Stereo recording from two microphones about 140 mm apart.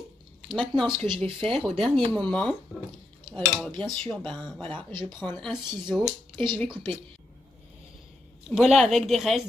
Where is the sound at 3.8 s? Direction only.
35° right (ahead or behind).